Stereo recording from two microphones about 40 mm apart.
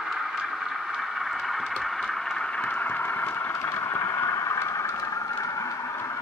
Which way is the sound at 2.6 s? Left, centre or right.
Left.